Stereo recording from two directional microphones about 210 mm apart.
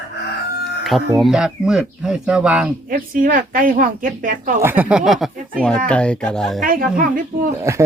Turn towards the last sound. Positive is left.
turn(degrees=-40)  # may be behind; listen again after turning